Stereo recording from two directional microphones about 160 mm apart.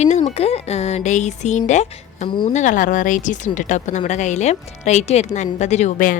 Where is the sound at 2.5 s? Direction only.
50° left (ahead or behind).